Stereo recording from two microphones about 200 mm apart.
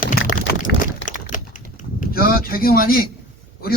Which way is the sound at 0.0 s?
45° left (ahead or behind).